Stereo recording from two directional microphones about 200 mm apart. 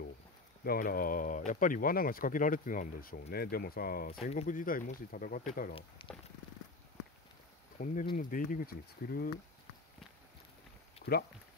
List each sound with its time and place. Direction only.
0.7 s speech: 45° left (ahead or behind)
4.2 s speech: 35° left (ahead or behind)
5.8 s speech: 25° left (ahead or behind)
7.8 s speech: 40° left (ahead or behind)
11.0 s a sound: 45° left (ahead or behind)